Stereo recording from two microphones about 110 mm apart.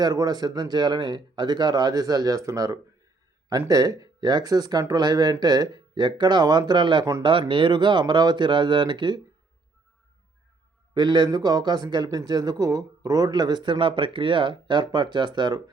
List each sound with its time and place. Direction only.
0.0 s a man's voice: 35° right (ahead or behind)
10.9 s a man's voice: 40° right (ahead or behind)